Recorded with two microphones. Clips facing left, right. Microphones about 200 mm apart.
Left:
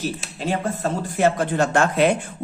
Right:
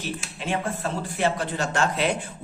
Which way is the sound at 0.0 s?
40° left (ahead or behind).